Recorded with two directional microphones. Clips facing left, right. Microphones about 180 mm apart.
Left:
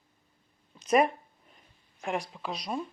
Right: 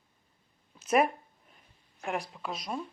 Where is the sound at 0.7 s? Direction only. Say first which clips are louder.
Left 2 dB; 5° right (ahead or behind).